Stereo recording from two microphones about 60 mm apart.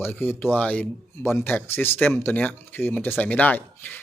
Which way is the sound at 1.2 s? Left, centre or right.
Left.